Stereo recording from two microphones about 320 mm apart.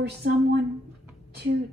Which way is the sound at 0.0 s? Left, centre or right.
Right.